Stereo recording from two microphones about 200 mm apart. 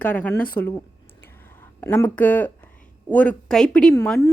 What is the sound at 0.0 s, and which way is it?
Speech, 10° left (ahead or behind).